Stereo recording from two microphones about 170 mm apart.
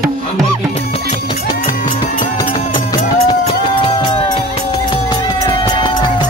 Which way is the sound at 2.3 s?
25° left (ahead or behind).